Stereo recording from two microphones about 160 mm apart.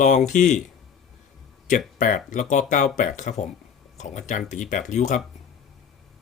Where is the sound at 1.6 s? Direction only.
55° left (ahead or behind).